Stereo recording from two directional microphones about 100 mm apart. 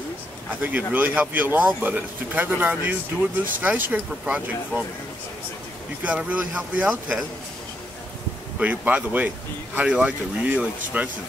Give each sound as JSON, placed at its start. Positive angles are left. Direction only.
{"t": 0.5, "sound": "speech", "side_deg": -15}
{"t": 6.0, "sound": "speech", "side_deg": -15}
{"t": 8.5, "sound": "speech", "side_deg": -15}